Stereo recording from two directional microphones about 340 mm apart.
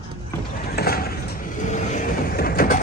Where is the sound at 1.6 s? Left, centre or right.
Left.